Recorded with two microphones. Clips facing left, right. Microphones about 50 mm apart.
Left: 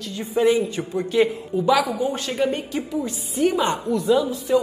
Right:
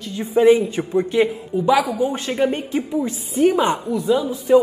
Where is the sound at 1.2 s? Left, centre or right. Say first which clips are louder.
Right 1 dB; centre; by 3.7 s right.